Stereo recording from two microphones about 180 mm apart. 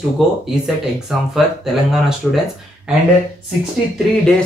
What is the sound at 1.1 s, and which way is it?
Speech, centre (ahead or behind).